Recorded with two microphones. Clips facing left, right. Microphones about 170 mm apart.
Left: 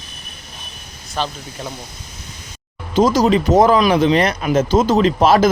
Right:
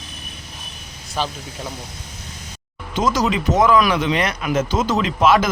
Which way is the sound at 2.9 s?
30° left (ahead or behind).